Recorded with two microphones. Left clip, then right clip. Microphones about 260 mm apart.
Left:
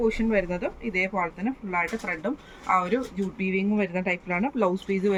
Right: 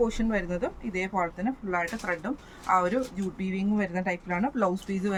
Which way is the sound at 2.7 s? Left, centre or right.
Right.